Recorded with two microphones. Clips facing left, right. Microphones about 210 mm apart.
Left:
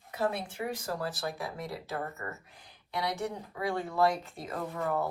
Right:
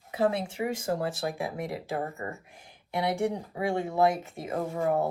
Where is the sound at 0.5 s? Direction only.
30° right (ahead or behind).